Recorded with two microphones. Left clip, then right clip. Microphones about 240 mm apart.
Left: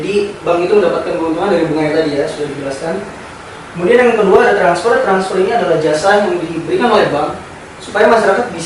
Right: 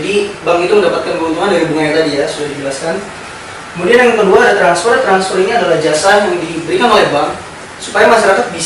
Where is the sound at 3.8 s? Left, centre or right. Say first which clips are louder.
Right 1 dB; centre.